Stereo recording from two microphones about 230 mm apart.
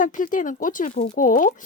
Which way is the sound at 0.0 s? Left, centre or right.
Left.